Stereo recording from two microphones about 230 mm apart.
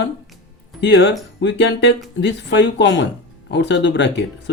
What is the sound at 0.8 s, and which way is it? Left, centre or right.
Speech, left.